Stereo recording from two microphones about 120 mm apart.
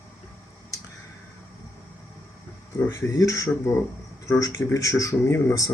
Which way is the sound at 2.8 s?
20° left (ahead or behind).